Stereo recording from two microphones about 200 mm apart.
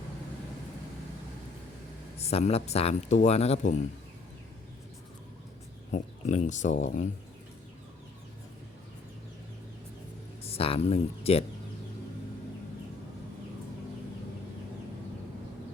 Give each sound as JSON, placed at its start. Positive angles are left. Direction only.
{"t": 2.1, "sound": "speech", "side_deg": 30}
{"t": 5.9, "sound": "speech", "side_deg": 35}
{"t": 10.4, "sound": "speech", "side_deg": 30}